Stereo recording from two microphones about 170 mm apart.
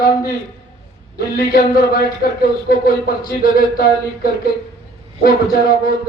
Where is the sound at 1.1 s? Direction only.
60° left (ahead or behind).